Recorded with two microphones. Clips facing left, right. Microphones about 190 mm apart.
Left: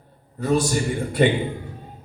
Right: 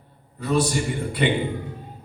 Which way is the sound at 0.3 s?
45° left (ahead or behind).